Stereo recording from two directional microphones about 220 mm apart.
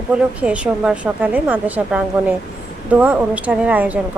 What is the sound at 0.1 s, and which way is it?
A woman's voice, 5° right (ahead or behind).